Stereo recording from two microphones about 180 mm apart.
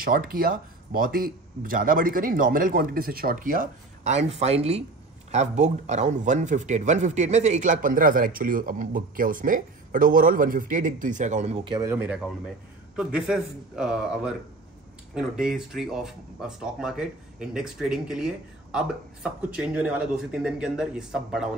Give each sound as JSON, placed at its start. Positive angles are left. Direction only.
{"t": 0.0, "sound": "speech", "side_deg": -55}
{"t": 11.6, "sound": "speech", "side_deg": -25}
{"t": 11.9, "sound": "speech", "side_deg": -10}